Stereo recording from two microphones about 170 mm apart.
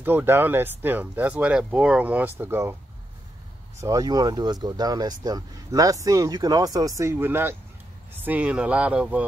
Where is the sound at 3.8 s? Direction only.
20° right (ahead or behind).